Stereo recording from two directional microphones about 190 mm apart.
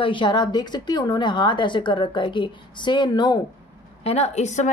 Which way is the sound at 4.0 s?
35° left (ahead or behind).